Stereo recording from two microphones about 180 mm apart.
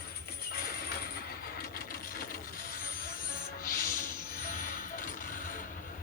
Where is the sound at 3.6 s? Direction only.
50° left (ahead or behind).